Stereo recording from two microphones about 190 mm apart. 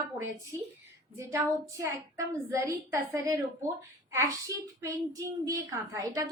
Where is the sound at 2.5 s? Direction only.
15° right (ahead or behind).